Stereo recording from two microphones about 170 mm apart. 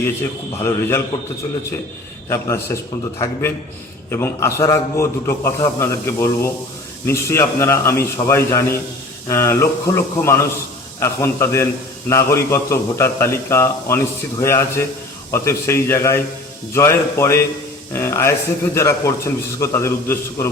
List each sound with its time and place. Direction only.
0.0 s a man's voice: 15° left (ahead or behind)
2.3 s a man's voice: 15° left (ahead or behind)
4.1 s a man's voice: 15° left (ahead or behind)